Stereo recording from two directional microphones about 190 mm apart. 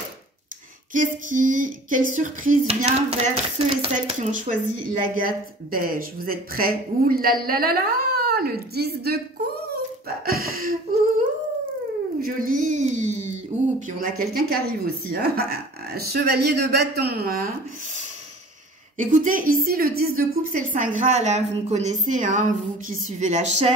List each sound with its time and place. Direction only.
0.9 s a sound: 45° right (ahead or behind)
7.4 s a woman's voice: 50° right (ahead or behind)
12.2 s a woman's voice: 45° right (ahead or behind)
14.3 s a woman's voice: 50° right (ahead or behind)
18.9 s a woman's voice: 45° right (ahead or behind)